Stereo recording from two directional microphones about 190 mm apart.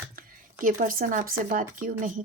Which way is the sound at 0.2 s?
50° right (ahead or behind).